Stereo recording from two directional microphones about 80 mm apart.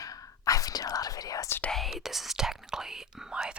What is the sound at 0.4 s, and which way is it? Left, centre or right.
Whispering, left.